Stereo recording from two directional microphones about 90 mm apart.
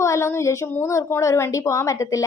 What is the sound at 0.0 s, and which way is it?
A woman's voice, 30° left (ahead or behind).